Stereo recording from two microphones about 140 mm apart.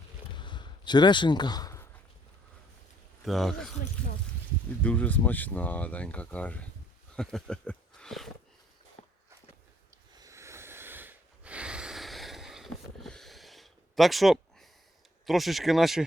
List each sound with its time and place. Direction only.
0.3 s a sound: 35° left (ahead or behind)
3.2 s speech: centre (ahead or behind)
4.8 s speech: 10° left (ahead or behind)
10.2 s snort: 20° right (ahead or behind); by 14.7 s centre (ahead or behind)
15.3 s speech: centre (ahead or behind)